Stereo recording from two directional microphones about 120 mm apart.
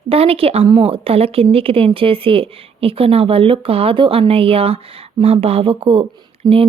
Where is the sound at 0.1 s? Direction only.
55° right (ahead or behind).